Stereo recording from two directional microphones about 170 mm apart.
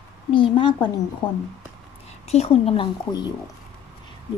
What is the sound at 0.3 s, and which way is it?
A woman's voice, 30° left (ahead or behind).